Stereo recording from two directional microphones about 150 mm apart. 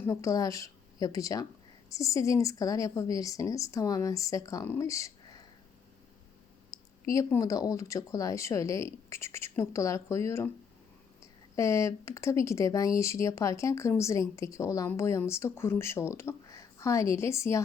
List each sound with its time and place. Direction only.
0.0 s speech: 20° left (ahead or behind)
6.7 s speech: 20° left (ahead or behind)